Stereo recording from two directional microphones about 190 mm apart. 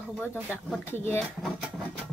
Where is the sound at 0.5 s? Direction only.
10° left (ahead or behind).